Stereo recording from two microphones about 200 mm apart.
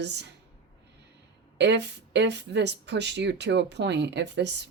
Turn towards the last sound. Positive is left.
turn(degrees=-60)  # may be behind; listen again after turning